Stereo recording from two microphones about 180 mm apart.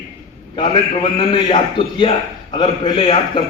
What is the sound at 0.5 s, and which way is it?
A man's voice, 30° left (ahead or behind).